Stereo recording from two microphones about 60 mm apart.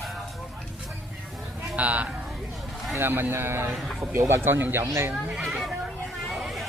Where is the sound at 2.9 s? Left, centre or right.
Right.